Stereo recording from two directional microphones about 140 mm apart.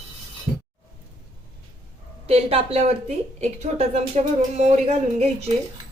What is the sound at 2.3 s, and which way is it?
A woman's voice, 45° right (ahead or behind).